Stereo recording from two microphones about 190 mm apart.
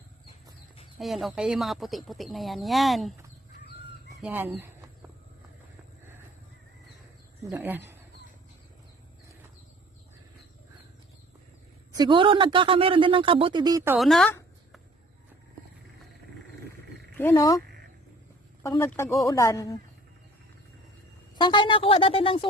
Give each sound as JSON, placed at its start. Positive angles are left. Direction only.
{"t": 0.9, "sound": "speech", "side_deg": 0}
{"t": 4.2, "sound": "speech", "side_deg": -10}
{"t": 7.4, "sound": "speech", "side_deg": -10}
{"t": 11.9, "sound": "speech", "side_deg": -25}
{"t": 14.0, "sound": "speech", "side_deg": 0}
{"t": 17.2, "sound": "speech", "side_deg": 15}
{"t": 18.8, "sound": "speech", "side_deg": 15}
{"t": 21.3, "sound": "speech", "side_deg": 25}